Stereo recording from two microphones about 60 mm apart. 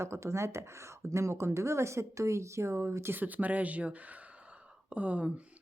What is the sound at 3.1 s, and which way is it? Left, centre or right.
Speech, right.